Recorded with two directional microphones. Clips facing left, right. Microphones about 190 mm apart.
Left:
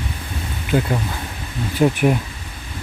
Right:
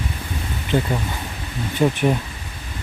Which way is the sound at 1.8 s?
10° left (ahead or behind).